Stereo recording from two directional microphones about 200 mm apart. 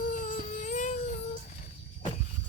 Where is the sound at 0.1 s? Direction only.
40° left (ahead or behind).